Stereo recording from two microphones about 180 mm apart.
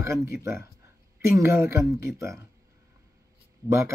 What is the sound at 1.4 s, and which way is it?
Speech, 15° right (ahead or behind).